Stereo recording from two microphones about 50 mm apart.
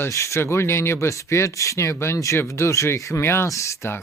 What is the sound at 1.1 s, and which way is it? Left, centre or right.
Speech, left.